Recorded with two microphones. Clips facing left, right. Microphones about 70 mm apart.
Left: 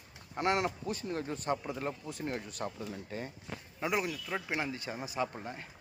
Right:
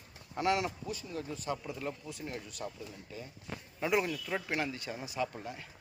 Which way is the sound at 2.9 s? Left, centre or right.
Left.